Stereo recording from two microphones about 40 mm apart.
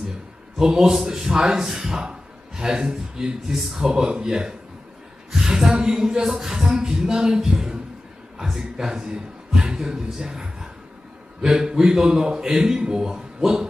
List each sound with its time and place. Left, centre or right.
0.6 s a man's voice: centre
5.3 s a sound: centre
5.7 s a man's voice: centre
6.7 s music: centre
8.4 s a man's voice: centre